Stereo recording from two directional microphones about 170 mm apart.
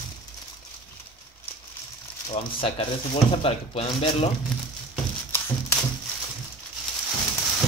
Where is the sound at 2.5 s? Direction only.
35° left (ahead or behind).